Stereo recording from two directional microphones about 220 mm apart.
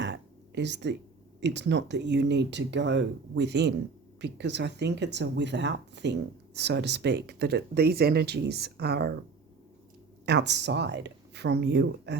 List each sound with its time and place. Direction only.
0.0 s a sound: 50° right (ahead or behind)
1.4 s speech: 50° right (ahead or behind)
10.2 s speech: 50° right (ahead or behind)